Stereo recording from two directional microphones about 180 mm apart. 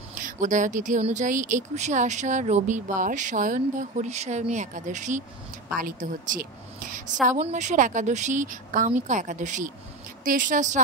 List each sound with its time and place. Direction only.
0.2 s speech: 45° right (ahead or behind)